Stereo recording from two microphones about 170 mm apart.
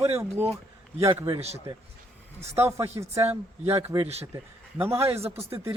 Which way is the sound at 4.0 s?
35° right (ahead or behind).